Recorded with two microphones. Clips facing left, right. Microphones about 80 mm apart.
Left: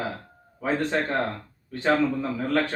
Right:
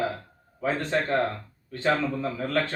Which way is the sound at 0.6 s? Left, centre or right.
Centre.